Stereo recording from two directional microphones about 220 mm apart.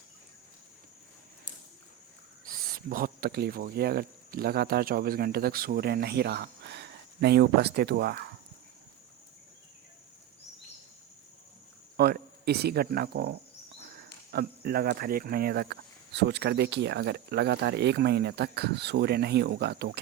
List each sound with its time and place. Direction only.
2.5 s speech: 40° right (ahead or behind)
11.9 s speech: 45° right (ahead or behind)